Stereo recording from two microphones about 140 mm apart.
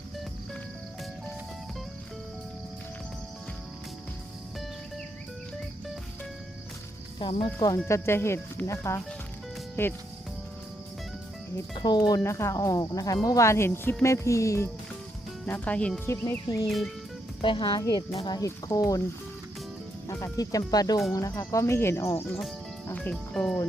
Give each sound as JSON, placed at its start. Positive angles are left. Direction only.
{"t": 7.2, "sound": "speech", "side_deg": 35}
{"t": 7.9, "sound": "speech", "side_deg": 20}
{"t": 11.7, "sound": "speech", "side_deg": 30}
{"t": 15.4, "sound": "speech", "side_deg": 10}
{"t": 16.6, "sound": "speech", "side_deg": 0}
{"t": 17.4, "sound": "speech", "side_deg": 35}
{"t": 20.1, "sound": "speech", "side_deg": 20}
{"t": 22.3, "sound": "speech", "side_deg": 0}